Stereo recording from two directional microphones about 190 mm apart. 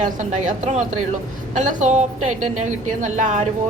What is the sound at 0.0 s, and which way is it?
A woman's voice, 40° right (ahead or behind).